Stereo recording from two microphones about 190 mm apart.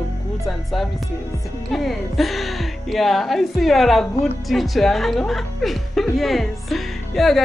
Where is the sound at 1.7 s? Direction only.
Centre (ahead or behind).